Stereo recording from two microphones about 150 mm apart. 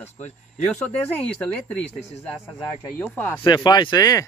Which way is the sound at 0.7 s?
10° left (ahead or behind).